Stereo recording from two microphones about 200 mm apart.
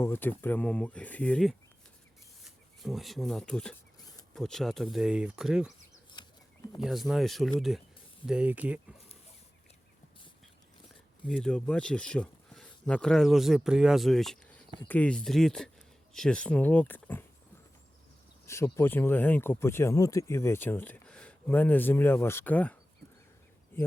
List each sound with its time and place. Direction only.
0.0 s speech: 10° left (ahead or behind)
6.2 s a sound: 20° left (ahead or behind)
6.7 s speech: centre (ahead or behind)
11.3 s speech: 5° left (ahead or behind)
18.4 s speech: 15° left (ahead or behind)